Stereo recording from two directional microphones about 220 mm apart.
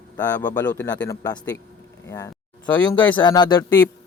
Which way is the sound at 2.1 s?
15° left (ahead or behind).